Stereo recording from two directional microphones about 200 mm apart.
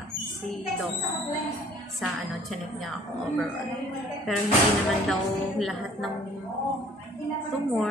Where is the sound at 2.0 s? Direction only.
Centre (ahead or behind).